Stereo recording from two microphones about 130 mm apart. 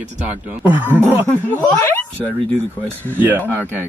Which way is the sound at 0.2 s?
10° right (ahead or behind).